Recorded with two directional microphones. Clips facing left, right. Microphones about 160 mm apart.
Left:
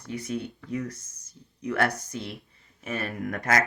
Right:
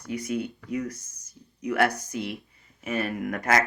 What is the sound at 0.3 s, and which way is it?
Speech, 20° right (ahead or behind).